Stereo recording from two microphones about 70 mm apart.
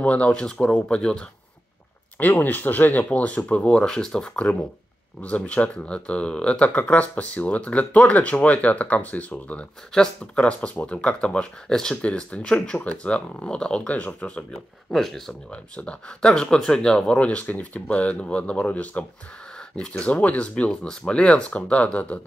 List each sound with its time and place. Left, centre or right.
0.0 s speech: centre
2.1 s speech: left
9.9 s speech: centre
14.9 s speech: centre
15.5 s speech: centre